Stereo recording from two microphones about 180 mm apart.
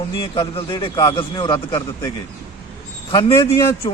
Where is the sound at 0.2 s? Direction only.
30° left (ahead or behind).